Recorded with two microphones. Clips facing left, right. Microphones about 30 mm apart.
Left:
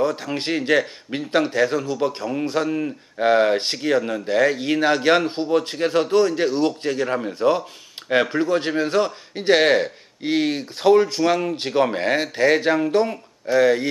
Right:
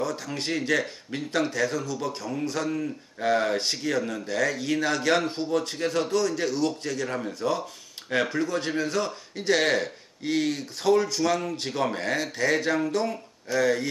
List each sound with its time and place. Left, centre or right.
0.0 s speech: left